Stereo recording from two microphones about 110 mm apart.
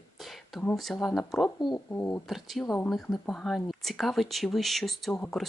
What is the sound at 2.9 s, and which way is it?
Speech, centre (ahead or behind).